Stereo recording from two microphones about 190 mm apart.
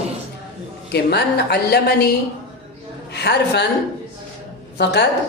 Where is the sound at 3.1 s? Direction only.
60° left (ahead or behind).